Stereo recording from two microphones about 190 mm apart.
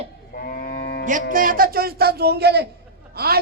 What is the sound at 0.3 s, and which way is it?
Livestock, 50° left (ahead or behind).